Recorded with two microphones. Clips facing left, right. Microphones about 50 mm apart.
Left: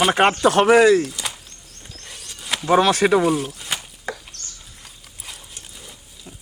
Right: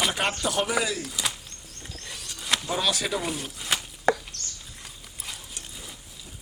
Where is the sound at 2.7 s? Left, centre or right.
Left.